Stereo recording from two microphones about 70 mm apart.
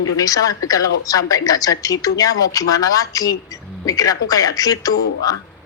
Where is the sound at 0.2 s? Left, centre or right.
Left.